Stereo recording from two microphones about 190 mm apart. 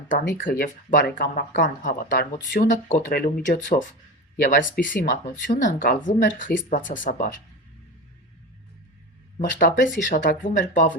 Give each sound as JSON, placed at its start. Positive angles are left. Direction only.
{"t": 0.1, "sound": "speech", "side_deg": 45}
{"t": 9.8, "sound": "speech", "side_deg": 45}